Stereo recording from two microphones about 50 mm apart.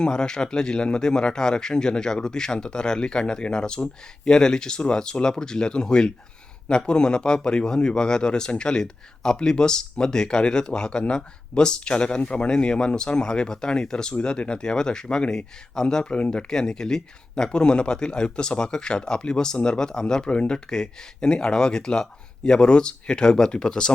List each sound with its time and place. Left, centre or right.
0.0 s speech: centre